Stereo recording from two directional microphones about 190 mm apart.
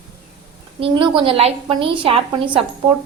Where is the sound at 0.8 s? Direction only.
25° right (ahead or behind).